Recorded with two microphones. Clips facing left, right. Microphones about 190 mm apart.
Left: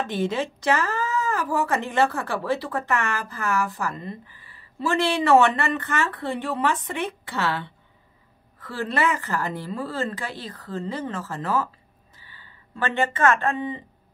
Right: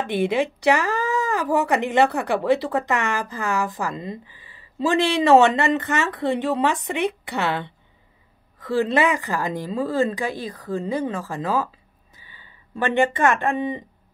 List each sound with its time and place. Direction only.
0.0 s speech: 15° right (ahead or behind)